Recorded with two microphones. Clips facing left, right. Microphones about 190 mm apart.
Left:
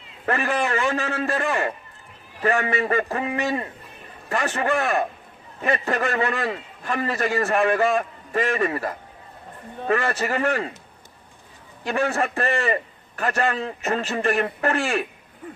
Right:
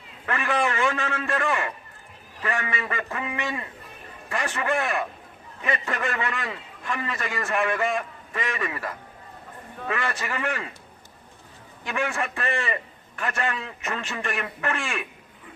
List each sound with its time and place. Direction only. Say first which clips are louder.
0.3 s a man's voice: left 2 dB; 40° left (ahead or behind)
11.8 s a man's voice: left 5 dB; 35° left (ahead or behind)